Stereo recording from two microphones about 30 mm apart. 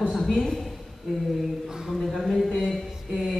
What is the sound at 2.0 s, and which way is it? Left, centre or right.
Speech, centre.